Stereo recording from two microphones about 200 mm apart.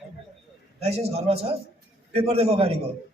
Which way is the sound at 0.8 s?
30° right (ahead or behind).